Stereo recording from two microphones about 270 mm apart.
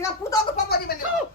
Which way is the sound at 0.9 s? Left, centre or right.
Left.